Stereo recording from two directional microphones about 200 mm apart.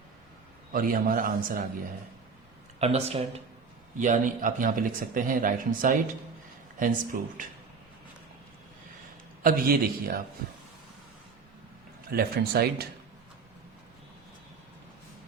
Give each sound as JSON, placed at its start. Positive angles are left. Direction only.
{"t": 0.7, "sound": "a man's voice", "side_deg": -45}
{"t": 2.7, "sound": "a man's voice", "side_deg": -30}
{"t": 9.4, "sound": "a man's voice", "side_deg": -45}
{"t": 12.0, "sound": "a man's voice", "side_deg": -50}